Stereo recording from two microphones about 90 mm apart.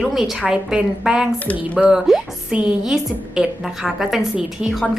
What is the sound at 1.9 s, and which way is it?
A woman's voice, 5° right (ahead or behind).